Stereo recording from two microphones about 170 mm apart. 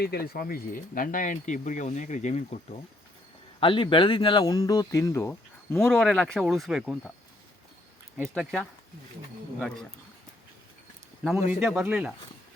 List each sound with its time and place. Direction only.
0.0 s speech: 65° left (ahead or behind); by 2.7 s 45° left (ahead or behind)
3.6 s speech: 30° left (ahead or behind); by 7.1 s 5° right (ahead or behind)
8.3 s speech: centre (ahead or behind)
11.2 s speech: centre (ahead or behind)